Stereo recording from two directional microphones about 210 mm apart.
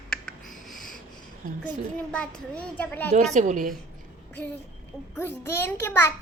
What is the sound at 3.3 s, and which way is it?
Speech, 35° right (ahead or behind).